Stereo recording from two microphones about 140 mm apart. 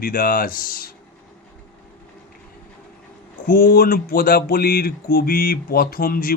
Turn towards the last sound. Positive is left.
turn(degrees=90)